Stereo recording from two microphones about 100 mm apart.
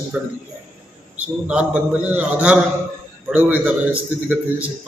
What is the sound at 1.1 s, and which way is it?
A man's voice, 15° right (ahead or behind).